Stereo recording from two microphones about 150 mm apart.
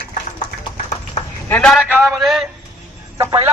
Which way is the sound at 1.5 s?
5° left (ahead or behind).